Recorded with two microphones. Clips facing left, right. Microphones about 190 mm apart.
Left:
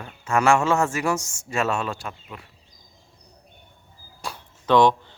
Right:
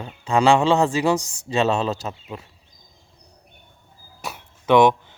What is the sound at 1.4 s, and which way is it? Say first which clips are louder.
Speech: right 4 dB; 20° right (ahead or behind).